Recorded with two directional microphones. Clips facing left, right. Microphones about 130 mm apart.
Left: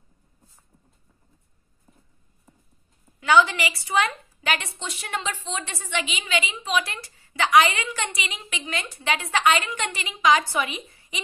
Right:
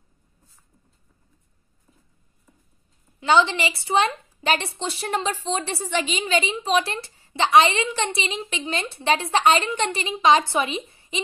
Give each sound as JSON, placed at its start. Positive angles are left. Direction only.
{"t": 3.2, "sound": "a woman's voice", "side_deg": -25}